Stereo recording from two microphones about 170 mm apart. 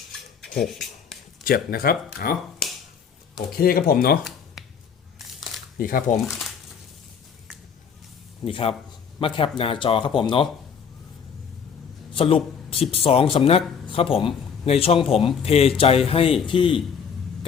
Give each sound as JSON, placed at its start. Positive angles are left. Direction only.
{"t": 0.1, "sound": "rub", "side_deg": 0}
{"t": 1.5, "sound": "speech", "side_deg": 60}
{"t": 4.6, "sound": "scissors", "side_deg": 0}
{"t": 5.7, "sound": "speech", "side_deg": 55}
{"t": 6.2, "sound": "speech", "side_deg": -5}
{"t": 8.4, "sound": "speech", "side_deg": 35}
{"t": 12.1, "sound": "a man's voice", "side_deg": 35}